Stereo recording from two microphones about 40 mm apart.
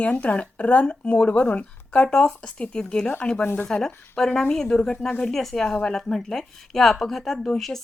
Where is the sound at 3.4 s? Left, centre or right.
Left.